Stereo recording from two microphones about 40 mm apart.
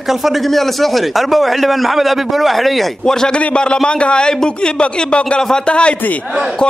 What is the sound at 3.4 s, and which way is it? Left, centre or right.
A man's voice, left.